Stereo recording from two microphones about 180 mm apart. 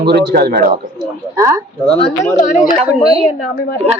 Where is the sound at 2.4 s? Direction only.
45° left (ahead or behind).